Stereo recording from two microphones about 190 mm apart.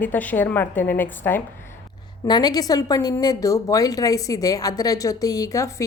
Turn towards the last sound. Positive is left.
turn(degrees=15)  # may be behind; listen again after turning